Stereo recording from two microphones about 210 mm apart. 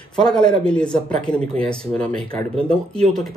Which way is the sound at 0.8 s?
20° left (ahead or behind).